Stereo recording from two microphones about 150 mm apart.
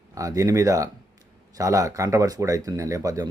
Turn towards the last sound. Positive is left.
turn(degrees=-25)  # may be behind; listen again after turning